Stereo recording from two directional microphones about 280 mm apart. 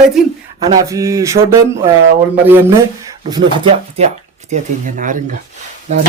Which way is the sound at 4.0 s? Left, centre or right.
Right.